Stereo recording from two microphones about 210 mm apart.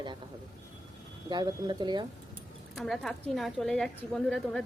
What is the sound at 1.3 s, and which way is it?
Speech, 20° right (ahead or behind).